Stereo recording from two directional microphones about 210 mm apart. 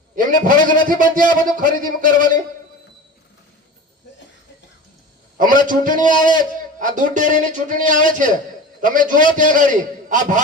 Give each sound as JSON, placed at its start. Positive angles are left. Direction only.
{"t": 0.2, "sound": "a man's voice", "side_deg": -40}
{"t": 5.4, "sound": "a man's voice", "side_deg": -40}